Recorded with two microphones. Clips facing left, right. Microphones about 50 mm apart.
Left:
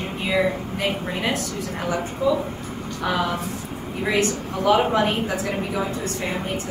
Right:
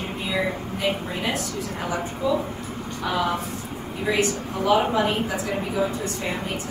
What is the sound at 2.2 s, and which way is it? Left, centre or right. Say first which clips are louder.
Speech: left 2 dB; left.